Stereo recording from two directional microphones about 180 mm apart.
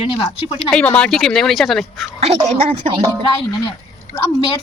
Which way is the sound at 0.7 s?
5° left (ahead or behind).